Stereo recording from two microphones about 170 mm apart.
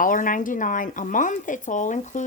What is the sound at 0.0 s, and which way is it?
A woman's voice, 50° left (ahead or behind).